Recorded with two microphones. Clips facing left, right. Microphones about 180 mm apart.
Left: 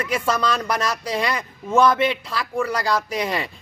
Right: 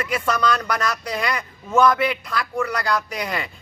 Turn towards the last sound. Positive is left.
turn(degrees=30)  # may be behind; listen again after turning